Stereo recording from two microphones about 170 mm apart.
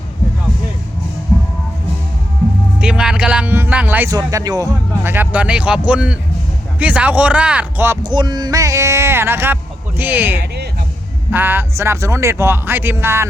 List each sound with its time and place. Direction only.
2.8 s a man's voice: 5° right (ahead or behind)
8.0 s a man's voice: 25° right (ahead or behind)